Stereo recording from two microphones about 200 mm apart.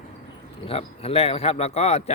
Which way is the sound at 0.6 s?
30° left (ahead or behind).